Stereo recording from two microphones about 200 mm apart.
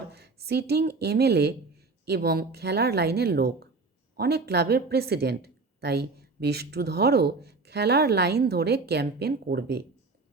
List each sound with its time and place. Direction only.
0.1 s a woman's voice: 55° right (ahead or behind)